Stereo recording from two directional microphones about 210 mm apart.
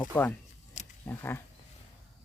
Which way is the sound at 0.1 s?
10° left (ahead or behind).